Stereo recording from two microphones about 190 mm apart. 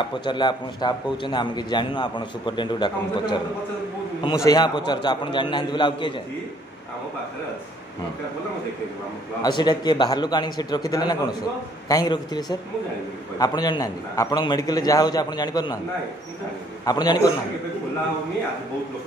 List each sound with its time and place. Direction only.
0.2 s a man's voice: 25° left (ahead or behind)
4.5 s a man's voice: 20° left (ahead or behind)
9.4 s a man's voice: 25° left (ahead or behind)
16.8 s a man's voice: 20° left (ahead or behind)